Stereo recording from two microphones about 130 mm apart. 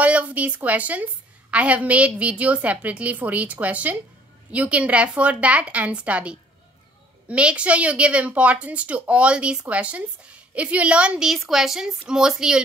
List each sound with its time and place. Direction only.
0.0 s a woman's voice: 10° right (ahead or behind)